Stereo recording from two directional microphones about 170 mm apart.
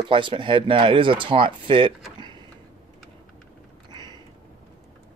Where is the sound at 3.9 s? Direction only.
25° right (ahead or behind).